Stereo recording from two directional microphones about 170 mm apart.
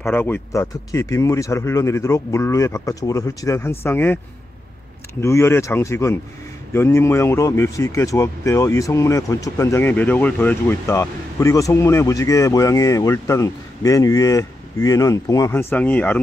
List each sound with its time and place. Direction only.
0.0 s speech: 10° left (ahead or behind)
5.2 s speech: 15° left (ahead or behind)